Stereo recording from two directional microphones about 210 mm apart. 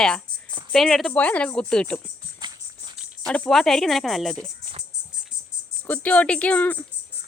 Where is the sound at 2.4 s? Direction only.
20° right (ahead or behind).